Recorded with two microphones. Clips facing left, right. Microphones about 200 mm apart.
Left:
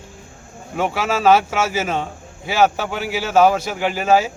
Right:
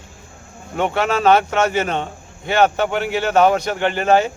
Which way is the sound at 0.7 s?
5° left (ahead or behind).